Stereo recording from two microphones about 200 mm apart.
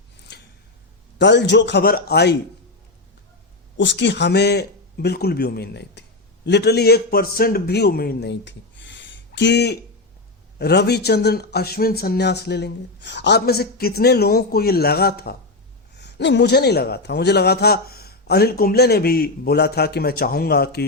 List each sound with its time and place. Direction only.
1.2 s a man's voice: 60° left (ahead or behind)
3.8 s a man's voice: 65° left (ahead or behind)